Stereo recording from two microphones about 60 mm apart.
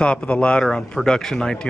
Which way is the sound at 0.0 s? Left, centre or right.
Centre.